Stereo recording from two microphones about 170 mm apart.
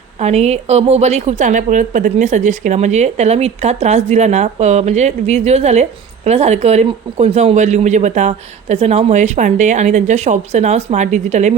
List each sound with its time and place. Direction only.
0.2 s a woman's voice: 40° right (ahead or behind)